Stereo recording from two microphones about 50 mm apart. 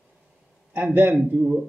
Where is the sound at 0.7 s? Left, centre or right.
Right.